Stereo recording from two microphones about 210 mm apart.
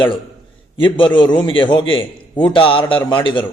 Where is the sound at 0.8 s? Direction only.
25° left (ahead or behind).